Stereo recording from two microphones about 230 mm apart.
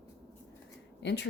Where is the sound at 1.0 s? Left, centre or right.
Left.